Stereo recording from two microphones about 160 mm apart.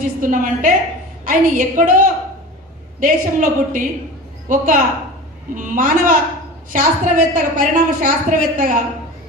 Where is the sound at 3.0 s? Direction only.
55° right (ahead or behind).